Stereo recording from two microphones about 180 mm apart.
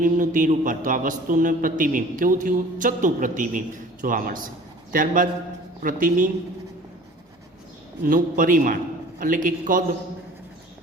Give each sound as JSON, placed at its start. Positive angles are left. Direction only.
{"t": 0.0, "sound": "a man's voice", "side_deg": -45}
{"t": 8.0, "sound": "a man's voice", "side_deg": -50}